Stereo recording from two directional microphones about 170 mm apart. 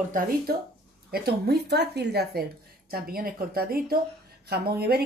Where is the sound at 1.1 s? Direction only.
70° right (ahead or behind).